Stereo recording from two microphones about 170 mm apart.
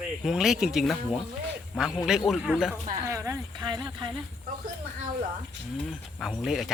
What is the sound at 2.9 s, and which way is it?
Speech, 20° right (ahead or behind).